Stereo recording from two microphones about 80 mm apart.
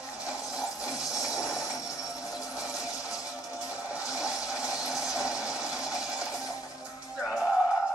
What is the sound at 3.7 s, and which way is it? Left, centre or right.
Music, centre.